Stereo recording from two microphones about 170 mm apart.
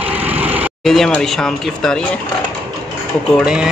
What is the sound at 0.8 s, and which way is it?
Speech, centre (ahead or behind).